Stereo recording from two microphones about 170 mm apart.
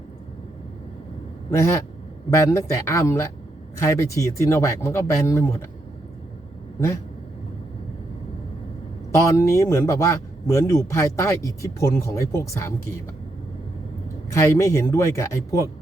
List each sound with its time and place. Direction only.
1.5 s speech: 15° left (ahead or behind)
6.7 s speech: 15° left (ahead or behind)
9.1 s speech: 15° left (ahead or behind)
14.3 s speech: 15° left (ahead or behind)